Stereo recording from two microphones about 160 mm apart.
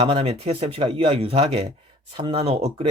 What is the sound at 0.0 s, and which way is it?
Speech, 35° right (ahead or behind).